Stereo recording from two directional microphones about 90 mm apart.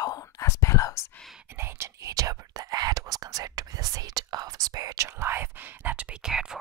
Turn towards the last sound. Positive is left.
turn(degrees=-5)  # may be behind; listen again after turning